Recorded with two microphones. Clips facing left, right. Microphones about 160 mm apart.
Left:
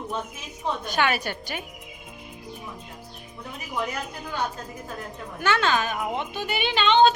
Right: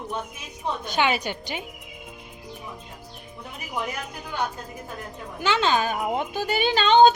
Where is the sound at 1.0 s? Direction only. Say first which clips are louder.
Right 2 dB; 20° right (ahead or behind).